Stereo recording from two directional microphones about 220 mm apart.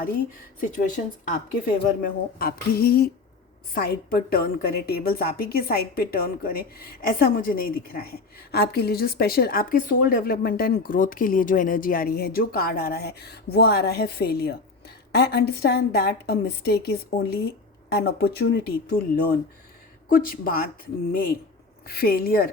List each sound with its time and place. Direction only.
0.6 s a woman's voice: 35° left (ahead or behind)